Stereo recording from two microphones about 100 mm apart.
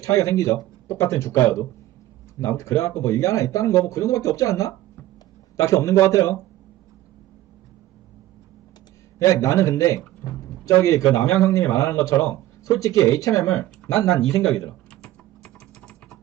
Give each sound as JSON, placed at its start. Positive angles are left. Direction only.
{"t": 0.0, "sound": "speech", "side_deg": 35}
{"t": 9.1, "sound": "speech", "side_deg": 30}
{"t": 15.0, "sound": "typing", "side_deg": 10}